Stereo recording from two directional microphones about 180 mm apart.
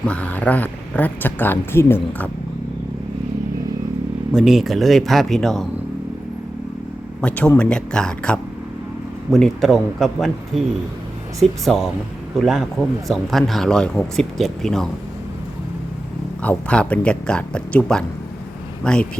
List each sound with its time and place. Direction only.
0.0 s speech: 5° left (ahead or behind)
4.3 s speech: centre (ahead or behind)
7.2 s speech: 5° left (ahead or behind)
16.4 s speech: 5° left (ahead or behind)